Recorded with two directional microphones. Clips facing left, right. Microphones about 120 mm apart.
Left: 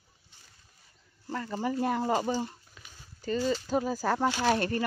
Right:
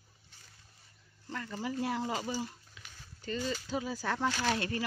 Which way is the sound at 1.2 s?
40° left (ahead or behind).